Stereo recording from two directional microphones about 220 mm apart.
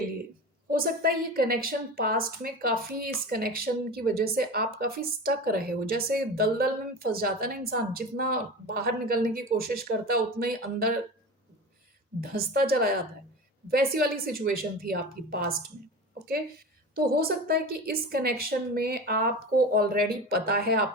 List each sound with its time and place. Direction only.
0.7 s a woman's voice: 45° right (ahead or behind)
12.2 s a woman's voice: 45° right (ahead or behind)
16.9 s a woman's voice: 45° right (ahead or behind)